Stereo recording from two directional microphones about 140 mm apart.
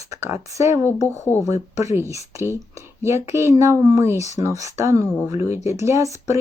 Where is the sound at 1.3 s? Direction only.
15° left (ahead or behind).